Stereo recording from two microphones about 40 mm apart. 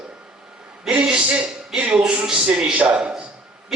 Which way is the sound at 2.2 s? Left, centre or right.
Centre.